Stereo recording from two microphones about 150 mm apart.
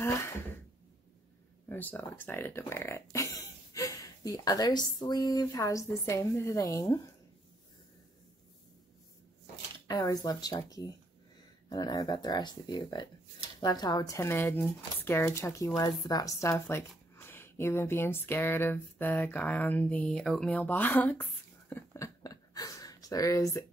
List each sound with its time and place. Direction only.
1.7 s speech: 10° left (ahead or behind)
9.8 s speech: 25° left (ahead or behind)